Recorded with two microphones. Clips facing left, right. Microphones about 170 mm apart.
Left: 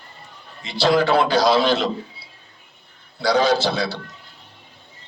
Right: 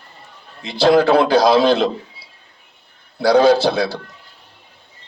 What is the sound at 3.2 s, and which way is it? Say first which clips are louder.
Speech: right 6 dB; 55° right (ahead or behind).